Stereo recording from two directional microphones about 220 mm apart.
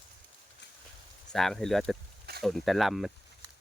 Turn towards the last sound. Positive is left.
turn(degrees=0)  # may be behind; listen again after turning